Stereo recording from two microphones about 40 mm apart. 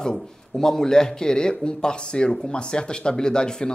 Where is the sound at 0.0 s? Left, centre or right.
Centre.